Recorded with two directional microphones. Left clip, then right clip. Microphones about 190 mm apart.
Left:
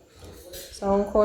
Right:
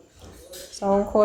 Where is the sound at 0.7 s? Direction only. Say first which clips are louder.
Right 2 dB; 20° right (ahead or behind).